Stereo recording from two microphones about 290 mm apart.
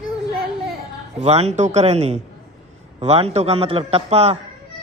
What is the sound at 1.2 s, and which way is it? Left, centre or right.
A man's voice, right.